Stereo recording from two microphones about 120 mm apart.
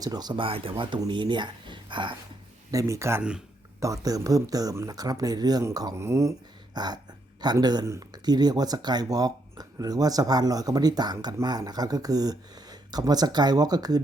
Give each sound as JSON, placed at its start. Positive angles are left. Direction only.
{"t": 0.0, "sound": "speech", "side_deg": -35}
{"t": 2.7, "sound": "speech", "side_deg": -25}
{"t": 6.7, "sound": "speech", "side_deg": -35}